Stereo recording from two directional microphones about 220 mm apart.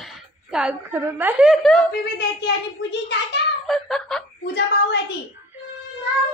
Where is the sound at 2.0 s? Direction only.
50° left (ahead or behind).